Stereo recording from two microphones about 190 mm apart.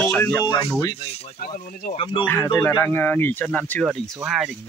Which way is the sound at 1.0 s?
35° left (ahead or behind).